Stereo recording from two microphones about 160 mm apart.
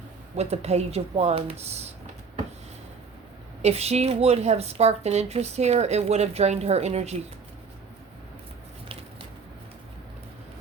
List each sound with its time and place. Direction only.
0.3 s speech: 40° right (ahead or behind)
3.6 s speech: 40° right (ahead or behind)